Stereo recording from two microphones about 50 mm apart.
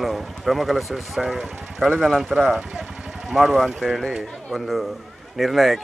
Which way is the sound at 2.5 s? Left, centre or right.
Centre.